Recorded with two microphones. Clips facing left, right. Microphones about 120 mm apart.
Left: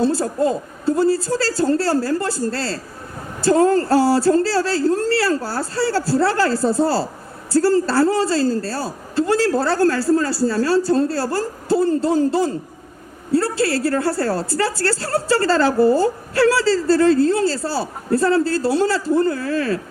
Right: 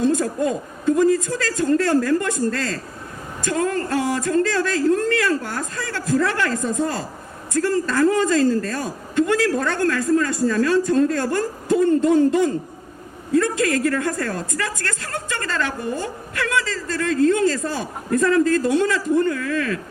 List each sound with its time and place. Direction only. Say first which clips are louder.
0.0 s a woman's voice: left 2 dB; 35° left (ahead or behind)